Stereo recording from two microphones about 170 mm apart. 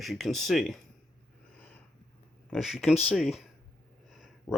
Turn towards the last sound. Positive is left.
turn(degrees=0)  # may be behind; listen again after turning